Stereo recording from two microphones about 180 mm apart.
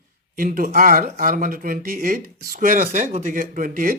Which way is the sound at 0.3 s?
55° right (ahead or behind).